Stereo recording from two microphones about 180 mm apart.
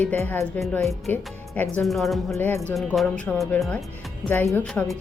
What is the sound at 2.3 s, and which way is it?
Speech, 15° left (ahead or behind).